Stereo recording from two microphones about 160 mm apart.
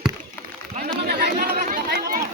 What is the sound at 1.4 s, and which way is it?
Chatter, 50° right (ahead or behind).